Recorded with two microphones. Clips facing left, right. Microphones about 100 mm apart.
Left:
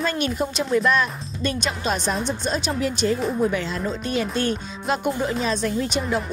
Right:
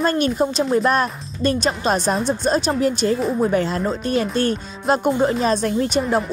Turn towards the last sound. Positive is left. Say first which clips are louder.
# right 4 dB
turn(degrees=-45)  # may be behind; listen again after turning